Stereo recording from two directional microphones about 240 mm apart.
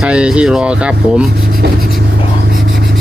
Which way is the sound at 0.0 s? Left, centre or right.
Centre.